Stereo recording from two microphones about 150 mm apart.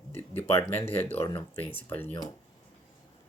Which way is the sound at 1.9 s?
10° left (ahead or behind).